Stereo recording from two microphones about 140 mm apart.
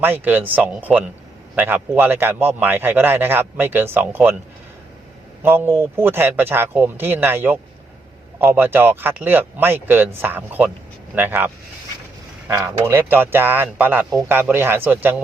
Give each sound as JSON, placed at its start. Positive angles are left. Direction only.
{"t": 0.0, "sound": "speech", "side_deg": -15}
{"t": 5.4, "sound": "speech", "side_deg": -15}